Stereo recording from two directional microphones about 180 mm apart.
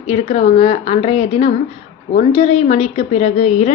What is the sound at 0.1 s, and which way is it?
A woman's voice, 35° left (ahead or behind).